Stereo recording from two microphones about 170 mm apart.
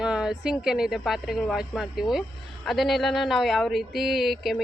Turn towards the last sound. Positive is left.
turn(degrees=0)  # may be behind; listen again after turning